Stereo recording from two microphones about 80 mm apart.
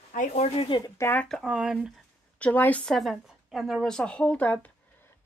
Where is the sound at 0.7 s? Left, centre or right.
Left.